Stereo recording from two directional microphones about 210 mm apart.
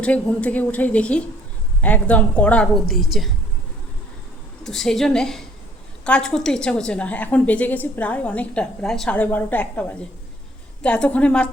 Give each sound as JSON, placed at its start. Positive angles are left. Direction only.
{"t": 0.0, "sound": "a woman's voice", "side_deg": 5}
{"t": 4.6, "sound": "a woman's voice", "side_deg": 0}
{"t": 10.8, "sound": "a woman's voice", "side_deg": 5}